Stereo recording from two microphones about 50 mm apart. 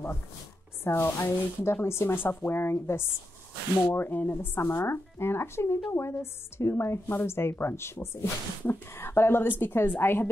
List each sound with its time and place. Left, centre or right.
0.8 s a woman's voice: left
4.6 s a woman's voice: left